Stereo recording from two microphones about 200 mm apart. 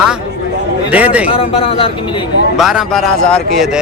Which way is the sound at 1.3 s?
30° left (ahead or behind).